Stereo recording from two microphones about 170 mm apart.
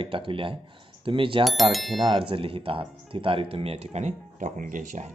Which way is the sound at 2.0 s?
30° right (ahead or behind).